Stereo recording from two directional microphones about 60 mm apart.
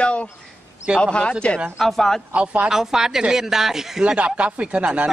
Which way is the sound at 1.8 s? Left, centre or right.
Centre.